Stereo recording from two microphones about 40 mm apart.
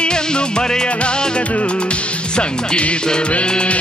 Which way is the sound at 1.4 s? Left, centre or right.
Left.